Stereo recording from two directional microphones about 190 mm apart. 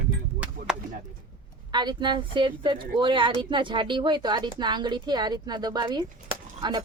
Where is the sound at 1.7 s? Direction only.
25° right (ahead or behind).